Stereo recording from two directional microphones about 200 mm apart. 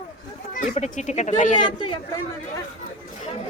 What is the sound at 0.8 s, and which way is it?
Speech, 35° left (ahead or behind).